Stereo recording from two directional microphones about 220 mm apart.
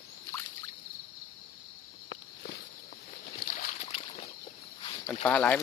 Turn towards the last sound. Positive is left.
turn(degrees=5)  # may be behind; listen again after turning